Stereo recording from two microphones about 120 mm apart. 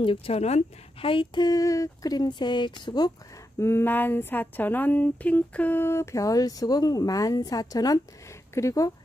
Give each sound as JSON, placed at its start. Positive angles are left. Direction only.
{"t": 0.0, "sound": "a woman's voice", "side_deg": 55}
{"t": 1.1, "sound": "speech", "side_deg": 35}
{"t": 3.5, "sound": "a sound", "side_deg": 20}